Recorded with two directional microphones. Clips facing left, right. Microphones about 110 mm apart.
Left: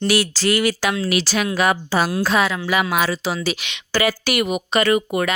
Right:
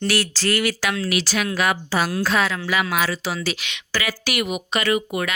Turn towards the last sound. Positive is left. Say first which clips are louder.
# left 4 dB
turn(degrees=45)  # may be behind; listen again after turning